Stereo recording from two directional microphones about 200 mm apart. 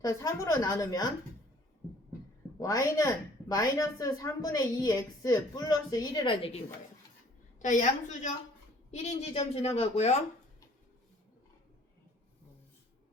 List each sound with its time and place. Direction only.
0.0 s a woman's voice: 15° left (ahead or behind)
2.6 s a woman's voice: 15° left (ahead or behind)
7.6 s speech: 40° left (ahead or behind)
9.3 s speech: 30° left (ahead or behind)